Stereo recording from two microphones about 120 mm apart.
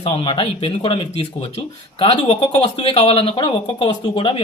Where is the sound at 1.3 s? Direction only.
55° left (ahead or behind).